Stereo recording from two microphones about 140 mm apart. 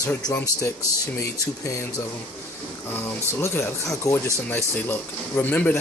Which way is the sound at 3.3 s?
20° left (ahead or behind).